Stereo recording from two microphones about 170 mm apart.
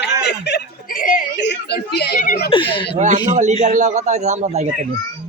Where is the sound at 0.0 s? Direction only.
85° left.